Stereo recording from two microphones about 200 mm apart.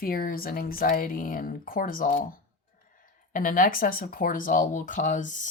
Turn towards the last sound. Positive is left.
turn(degrees=40)  # may be behind; listen again after turning